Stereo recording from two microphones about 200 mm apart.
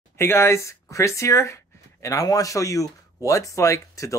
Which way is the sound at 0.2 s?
15° left (ahead or behind).